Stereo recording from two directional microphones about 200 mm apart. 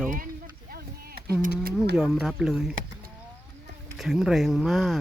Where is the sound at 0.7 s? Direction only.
50° right (ahead or behind).